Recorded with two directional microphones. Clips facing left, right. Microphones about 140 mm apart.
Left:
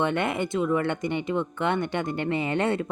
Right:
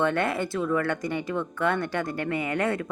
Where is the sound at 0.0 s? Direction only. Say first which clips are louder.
Even; 20° left (ahead or behind).